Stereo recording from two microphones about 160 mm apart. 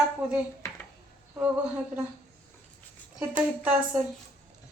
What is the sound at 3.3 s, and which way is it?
Speech, 10° right (ahead or behind).